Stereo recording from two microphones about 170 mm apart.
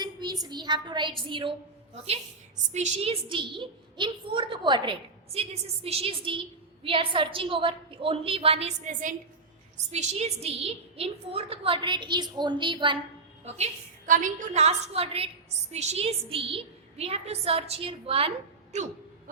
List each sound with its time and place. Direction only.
0.0 s a sound: 25° right (ahead or behind)
2.7 s a woman's voice: 40° right (ahead or behind)
13.4 s a woman's voice: 40° right (ahead or behind)
14.1 s a woman's voice: 50° right (ahead or behind)